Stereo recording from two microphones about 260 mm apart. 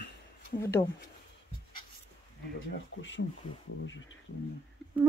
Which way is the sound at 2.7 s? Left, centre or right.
Left.